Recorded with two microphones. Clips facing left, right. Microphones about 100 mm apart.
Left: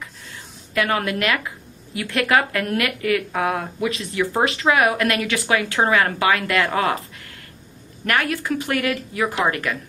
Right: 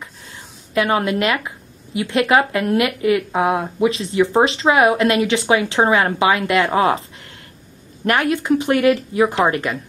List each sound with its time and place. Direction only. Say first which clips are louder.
0.7 s speech: right 4 dB; 25° right (ahead or behind)